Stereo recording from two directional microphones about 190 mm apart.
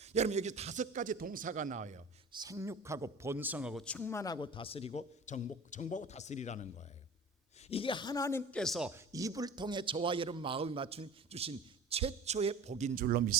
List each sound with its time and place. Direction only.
0.0 s a man's voice: 35° right (ahead or behind)
2.3 s a man's voice: 20° right (ahead or behind)
3.8 s a man's voice: 10° left (ahead or behind); by 6.8 s 40° left (ahead or behind)
7.7 s a man's voice: 25° left (ahead or behind); by 8.9 s centre (ahead or behind)
8.9 s a man's voice: 15° right (ahead or behind); by 13.3 s 50° right (ahead or behind)